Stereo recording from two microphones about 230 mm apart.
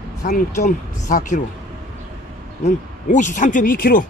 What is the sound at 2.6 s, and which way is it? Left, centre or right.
Speech, left.